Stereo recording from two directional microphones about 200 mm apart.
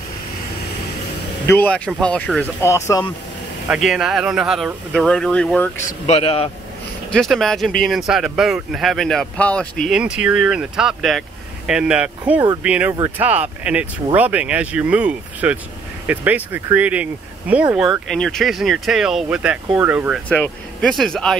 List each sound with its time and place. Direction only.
1.5 s speech: 10° left (ahead or behind)
3.6 s speech: 5° right (ahead or behind)
5.9 s a man's voice: 35° left (ahead or behind)
7.1 s speech: centre (ahead or behind)
20.2 s speech: 5° left (ahead or behind)